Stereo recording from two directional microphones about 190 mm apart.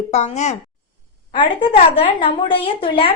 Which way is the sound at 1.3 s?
25° left (ahead or behind).